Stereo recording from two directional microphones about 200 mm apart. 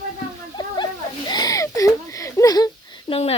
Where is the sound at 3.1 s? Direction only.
30° left (ahead or behind).